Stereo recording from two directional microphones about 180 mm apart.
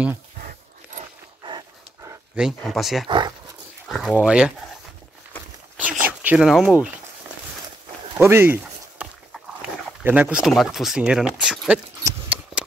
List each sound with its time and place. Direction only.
2.3 s speech: centre (ahead or behind)
3.1 s speech: 25° right (ahead or behind)
3.9 s speech: centre (ahead or behind)
5.8 s a sound: 10° right (ahead or behind)
8.2 s a sound: 15° right (ahead or behind)
10.0 s speech: 10° right (ahead or behind)
12.0 s horse: 10° right (ahead or behind)